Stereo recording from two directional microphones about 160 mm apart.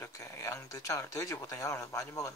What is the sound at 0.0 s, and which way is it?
Speech, 20° left (ahead or behind).